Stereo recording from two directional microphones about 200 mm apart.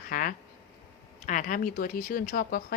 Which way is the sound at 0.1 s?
45° left (ahead or behind).